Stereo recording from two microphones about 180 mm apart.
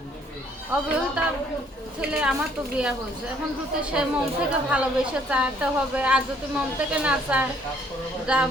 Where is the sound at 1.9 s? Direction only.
5° right (ahead or behind).